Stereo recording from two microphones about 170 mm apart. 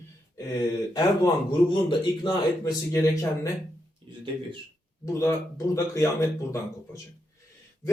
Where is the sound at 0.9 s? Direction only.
25° left (ahead or behind).